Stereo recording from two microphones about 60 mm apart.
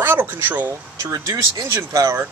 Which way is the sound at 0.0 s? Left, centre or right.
Right.